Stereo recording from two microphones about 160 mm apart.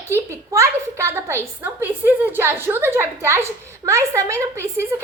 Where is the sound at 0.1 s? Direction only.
15° right (ahead or behind).